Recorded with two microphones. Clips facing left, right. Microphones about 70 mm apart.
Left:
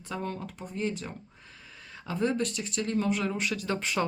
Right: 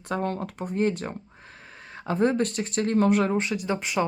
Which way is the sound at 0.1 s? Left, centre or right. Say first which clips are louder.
Right 7 dB; right.